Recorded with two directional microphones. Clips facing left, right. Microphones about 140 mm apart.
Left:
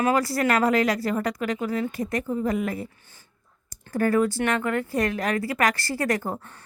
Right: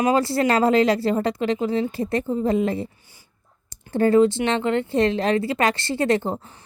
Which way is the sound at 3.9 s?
25° right (ahead or behind).